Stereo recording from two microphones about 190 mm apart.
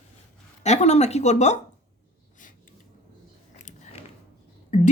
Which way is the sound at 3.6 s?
40° left (ahead or behind).